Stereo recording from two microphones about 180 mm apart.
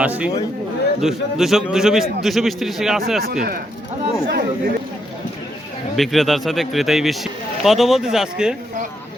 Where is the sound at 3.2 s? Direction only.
50° right (ahead or behind).